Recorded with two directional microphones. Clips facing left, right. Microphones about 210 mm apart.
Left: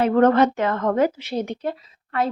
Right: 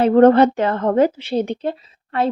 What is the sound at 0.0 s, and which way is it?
Speech, 30° right (ahead or behind).